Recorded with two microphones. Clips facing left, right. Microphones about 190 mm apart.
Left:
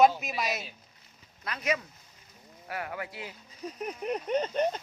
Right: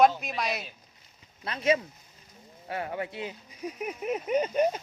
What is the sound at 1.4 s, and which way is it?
Speech, 25° right (ahead or behind).